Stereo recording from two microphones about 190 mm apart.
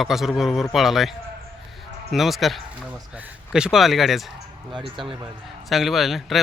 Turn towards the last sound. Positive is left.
turn(degrees=0)  # may be behind; listen again after turning